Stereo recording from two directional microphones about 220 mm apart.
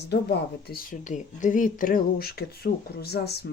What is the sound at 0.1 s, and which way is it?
Speech, 45° left (ahead or behind).